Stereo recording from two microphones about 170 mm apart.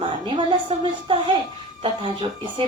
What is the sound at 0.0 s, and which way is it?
Speech, 25° right (ahead or behind).